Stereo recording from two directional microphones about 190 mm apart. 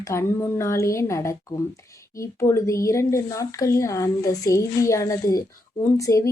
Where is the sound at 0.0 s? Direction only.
15° left (ahead or behind).